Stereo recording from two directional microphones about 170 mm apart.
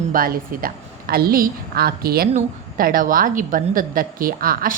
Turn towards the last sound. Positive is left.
turn(degrees=-60)  # may be behind; listen again after turning